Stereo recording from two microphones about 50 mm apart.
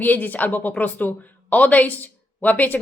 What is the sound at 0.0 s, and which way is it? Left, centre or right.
Speech, left.